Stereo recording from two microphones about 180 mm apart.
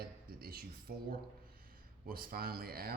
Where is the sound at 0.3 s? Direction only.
55° right (ahead or behind).